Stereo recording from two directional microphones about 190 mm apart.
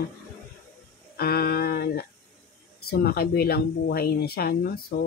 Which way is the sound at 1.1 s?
55° left (ahead or behind).